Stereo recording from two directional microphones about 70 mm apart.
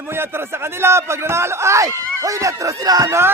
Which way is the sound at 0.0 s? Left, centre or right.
Right.